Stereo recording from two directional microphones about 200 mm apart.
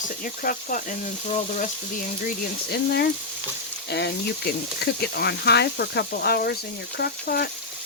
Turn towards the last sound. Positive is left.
turn(degrees=50)  # may be behind; listen again after turning